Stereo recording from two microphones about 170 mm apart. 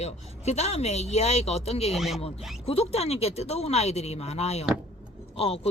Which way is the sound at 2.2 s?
35° left (ahead or behind).